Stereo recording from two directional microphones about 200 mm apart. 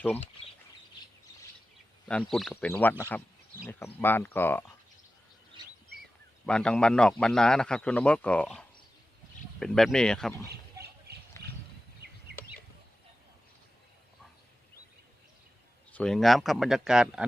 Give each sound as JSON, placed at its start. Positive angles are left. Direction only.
{"t": 2.0, "sound": "a man's voice", "side_deg": 5}
{"t": 6.4, "sound": "a man's voice", "side_deg": 5}
{"t": 10.8, "sound": "a sound", "side_deg": -55}
{"t": 15.9, "sound": "a man's voice", "side_deg": 5}